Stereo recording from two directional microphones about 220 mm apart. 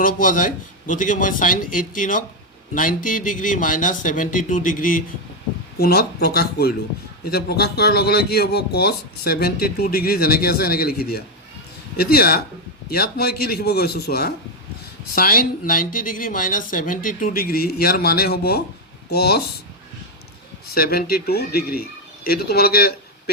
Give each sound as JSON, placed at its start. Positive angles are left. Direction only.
{"t": 0.0, "sound": "a man's voice", "side_deg": 40}
{"t": 20.7, "sound": "speech", "side_deg": 45}